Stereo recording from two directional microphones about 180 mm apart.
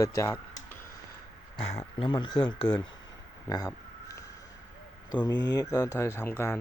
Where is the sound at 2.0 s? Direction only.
25° left (ahead or behind).